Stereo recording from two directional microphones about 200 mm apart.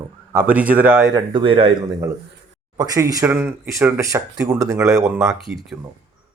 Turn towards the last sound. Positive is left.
turn(degrees=0)  # may be behind; listen again after turning